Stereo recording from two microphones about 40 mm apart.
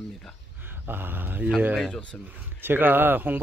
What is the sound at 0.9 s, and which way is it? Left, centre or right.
Speech, right.